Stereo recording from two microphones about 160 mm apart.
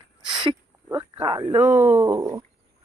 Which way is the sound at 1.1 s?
30° right (ahead or behind).